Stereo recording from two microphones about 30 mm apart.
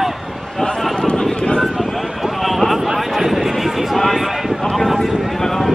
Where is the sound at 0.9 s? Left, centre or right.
Left.